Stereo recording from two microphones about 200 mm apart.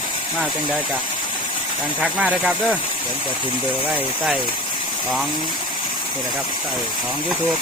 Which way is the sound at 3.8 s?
5° right (ahead or behind).